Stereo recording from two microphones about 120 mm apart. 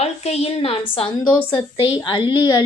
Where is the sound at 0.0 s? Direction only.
60° left (ahead or behind).